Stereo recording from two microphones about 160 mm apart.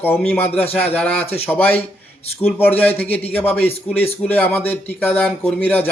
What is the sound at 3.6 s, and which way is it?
Speech, 40° left (ahead or behind).